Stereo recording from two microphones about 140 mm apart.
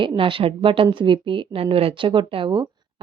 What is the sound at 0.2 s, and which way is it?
Speech, 40° right (ahead or behind).